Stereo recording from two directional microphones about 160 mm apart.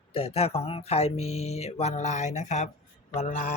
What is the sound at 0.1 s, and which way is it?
Speech, 40° left (ahead or behind).